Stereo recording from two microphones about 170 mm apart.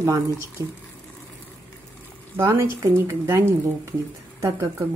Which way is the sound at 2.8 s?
15° right (ahead or behind).